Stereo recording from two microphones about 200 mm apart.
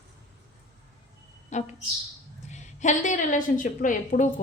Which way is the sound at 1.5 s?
35° left (ahead or behind).